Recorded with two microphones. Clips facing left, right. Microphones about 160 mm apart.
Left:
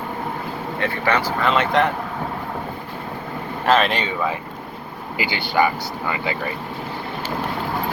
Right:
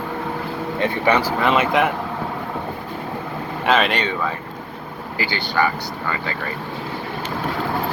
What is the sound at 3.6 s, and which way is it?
Speech, centre (ahead or behind).